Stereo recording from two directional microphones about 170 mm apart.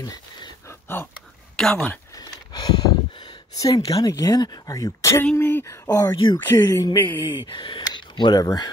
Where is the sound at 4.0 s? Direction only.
20° left (ahead or behind).